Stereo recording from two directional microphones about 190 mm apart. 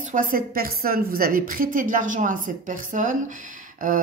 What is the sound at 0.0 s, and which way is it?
A woman's voice, 45° right (ahead or behind).